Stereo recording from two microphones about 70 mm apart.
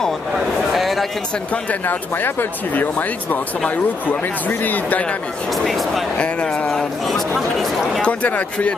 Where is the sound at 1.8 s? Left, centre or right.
Left.